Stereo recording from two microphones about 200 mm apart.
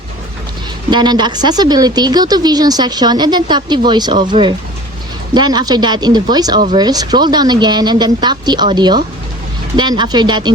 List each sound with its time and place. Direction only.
0.9 s speech: 20° right (ahead or behind)